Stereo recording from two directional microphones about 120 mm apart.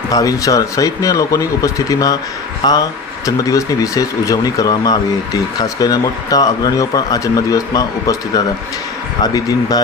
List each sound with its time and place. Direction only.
0.1 s speech: 30° left (ahead or behind)
9.2 s speech: 30° left (ahead or behind)